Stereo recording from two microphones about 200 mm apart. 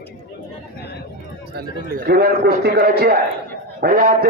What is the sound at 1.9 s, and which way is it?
A man's voice, 50° right (ahead or behind).